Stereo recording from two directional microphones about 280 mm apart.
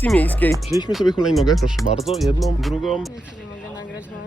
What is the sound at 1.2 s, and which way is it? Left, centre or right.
Speech, centre.